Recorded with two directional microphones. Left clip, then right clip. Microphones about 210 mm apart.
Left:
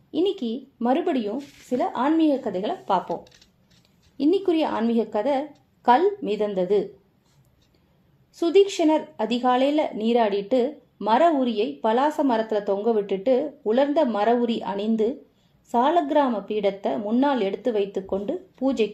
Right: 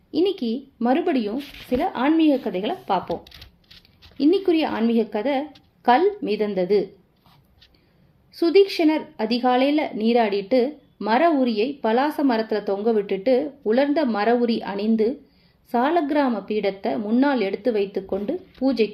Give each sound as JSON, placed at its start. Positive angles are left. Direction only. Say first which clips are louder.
{"t": 0.1, "sound": "a woman's voice", "louder": "right 2 dB", "side_deg": -5}
{"t": 3.2, "sound": "a sound", "louder": "right 8 dB", "side_deg": -35}
{"t": 4.2, "sound": "a woman's voice", "louder": "right 2 dB", "side_deg": 0}
{"t": 8.3, "sound": "a woman's voice", "louder": "right 2 dB", "side_deg": -5}